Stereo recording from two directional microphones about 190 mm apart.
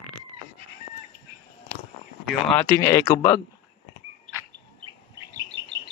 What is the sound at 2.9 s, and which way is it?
Speech, 20° left (ahead or behind).